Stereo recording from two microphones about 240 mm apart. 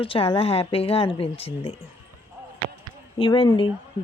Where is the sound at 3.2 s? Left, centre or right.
Left.